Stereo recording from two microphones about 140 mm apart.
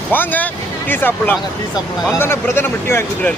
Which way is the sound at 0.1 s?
15° left (ahead or behind).